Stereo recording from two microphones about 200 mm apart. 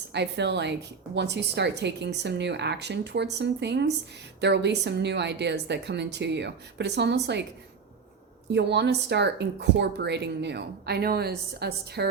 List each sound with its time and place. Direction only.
0.1 s a woman's voice: 60° right (ahead or behind)
8.5 s a woman's voice: 60° right (ahead or behind)